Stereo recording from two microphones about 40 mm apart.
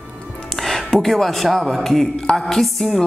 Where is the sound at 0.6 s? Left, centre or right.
Centre.